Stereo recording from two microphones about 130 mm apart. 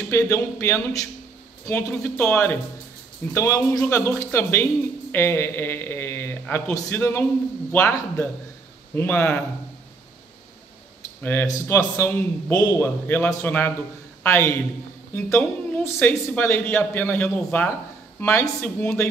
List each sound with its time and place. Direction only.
0.1 s a man's voice: 20° left (ahead or behind)
3.9 s a man's voice: 10° left (ahead or behind)
11.4 s a man's voice: 30° left (ahead or behind)
11.7 s a man's voice: 20° left (ahead or behind)